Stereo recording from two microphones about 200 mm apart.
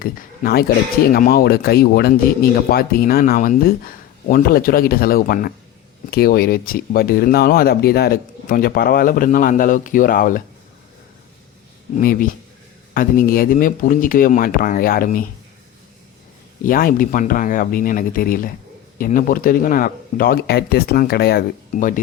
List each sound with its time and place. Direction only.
0.0 s speech: 45° left (ahead or behind)
11.9 s speech: 45° left (ahead or behind)
16.6 s speech: 45° left (ahead or behind)